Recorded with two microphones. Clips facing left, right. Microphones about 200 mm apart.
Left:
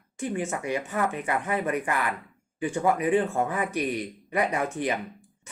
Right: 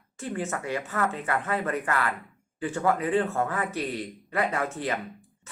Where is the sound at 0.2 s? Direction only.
15° left (ahead or behind).